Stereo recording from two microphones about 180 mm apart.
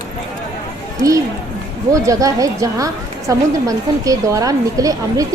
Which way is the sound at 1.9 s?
20° right (ahead or behind).